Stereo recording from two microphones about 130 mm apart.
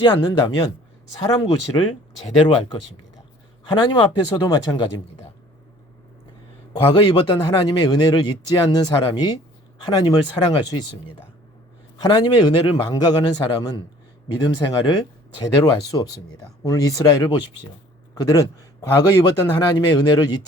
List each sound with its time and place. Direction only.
0.0 s a man's voice: 35° left (ahead or behind)
2.3 s a man's voice: 45° left (ahead or behind)
6.8 s a man's voice: 35° left (ahead or behind)
11.9 s a man's voice: 30° left (ahead or behind)